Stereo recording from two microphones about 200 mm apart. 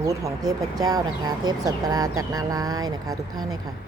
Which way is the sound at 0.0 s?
15° right (ahead or behind).